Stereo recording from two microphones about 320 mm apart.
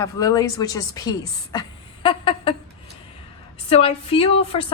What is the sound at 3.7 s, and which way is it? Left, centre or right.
Speech, centre.